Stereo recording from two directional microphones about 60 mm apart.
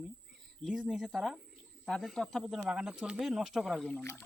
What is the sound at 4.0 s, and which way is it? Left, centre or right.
Speech, left.